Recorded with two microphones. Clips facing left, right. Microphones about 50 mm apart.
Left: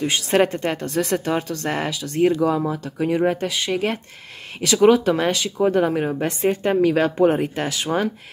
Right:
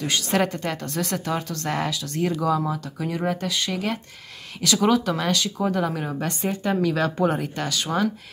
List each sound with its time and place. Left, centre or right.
0.0 s speech: left
3.0 s speech: left
6.6 s speech: left